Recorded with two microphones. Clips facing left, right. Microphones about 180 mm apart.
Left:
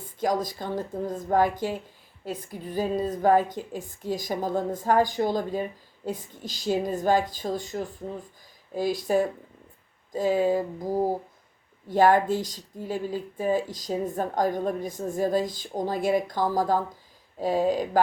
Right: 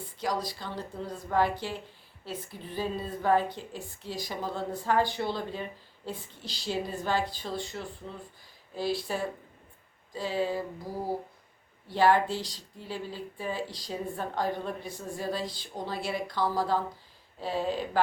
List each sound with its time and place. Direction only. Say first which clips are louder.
0.0 s a woman's voice: left 6 dB; 45° left (ahead or behind)